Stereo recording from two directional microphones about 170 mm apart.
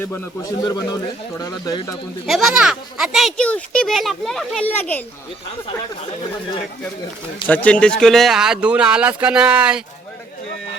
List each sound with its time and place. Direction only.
0.6 s speech: 20° left (ahead or behind)
2.2 s a child's voice: centre (ahead or behind)
7.4 s a child's voice: 10° left (ahead or behind); by 9.8 s 5° right (ahead or behind)